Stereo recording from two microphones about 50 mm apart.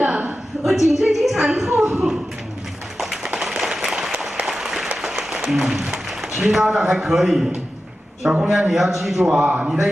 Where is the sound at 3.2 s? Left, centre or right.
Centre.